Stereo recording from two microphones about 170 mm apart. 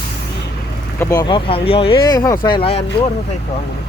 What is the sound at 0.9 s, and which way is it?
Speech, 25° left (ahead or behind).